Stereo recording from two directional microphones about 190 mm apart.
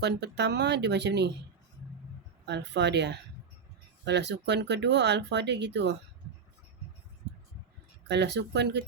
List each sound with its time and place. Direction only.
0.0 s speech: 65° right (ahead or behind)
2.5 s speech: 65° right (ahead or behind)
8.0 s speech: 65° right (ahead or behind)